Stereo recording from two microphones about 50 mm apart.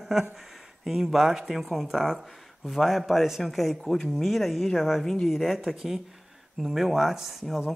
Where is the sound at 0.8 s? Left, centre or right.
Centre.